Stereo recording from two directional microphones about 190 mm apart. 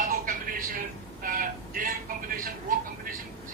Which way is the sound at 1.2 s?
50° right (ahead or behind).